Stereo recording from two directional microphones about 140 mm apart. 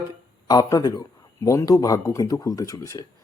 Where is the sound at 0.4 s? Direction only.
30° left (ahead or behind).